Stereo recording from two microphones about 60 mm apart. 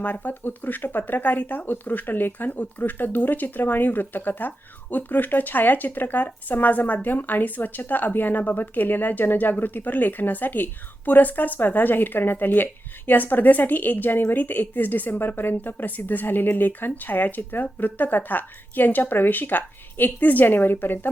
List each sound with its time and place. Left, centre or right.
0.0 s speech: left